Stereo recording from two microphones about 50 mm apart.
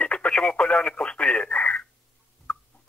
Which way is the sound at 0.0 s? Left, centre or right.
Left.